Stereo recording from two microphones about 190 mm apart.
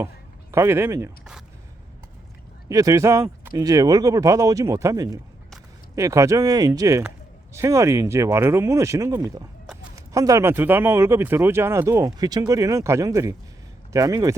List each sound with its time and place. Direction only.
0.5 s speech: 15° right (ahead or behind)
1.2 s a sound: 5° right (ahead or behind)
2.6 s speech: 20° right (ahead or behind)